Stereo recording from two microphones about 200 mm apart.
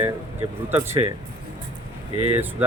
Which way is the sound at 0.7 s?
10° right (ahead or behind).